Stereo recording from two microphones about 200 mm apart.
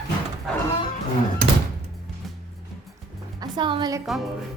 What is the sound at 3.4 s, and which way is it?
Speech, 25° right (ahead or behind).